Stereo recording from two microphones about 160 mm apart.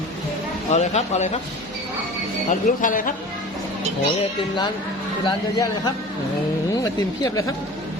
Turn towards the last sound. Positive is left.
turn(degrees=20)  # may be behind; listen again after turning